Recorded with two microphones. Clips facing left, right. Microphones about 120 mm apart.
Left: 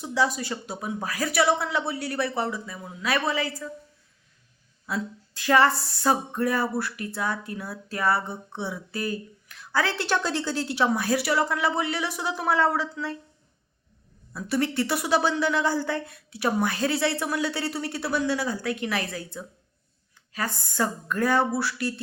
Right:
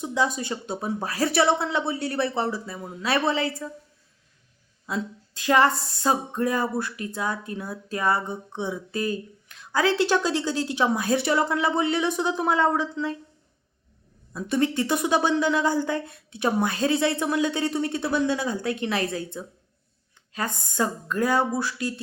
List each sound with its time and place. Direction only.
0.0 s speech: 20° right (ahead or behind)
4.9 s speech: 20° right (ahead or behind)
14.5 s speech: 20° right (ahead or behind)
21.5 s a sound: 15° right (ahead or behind)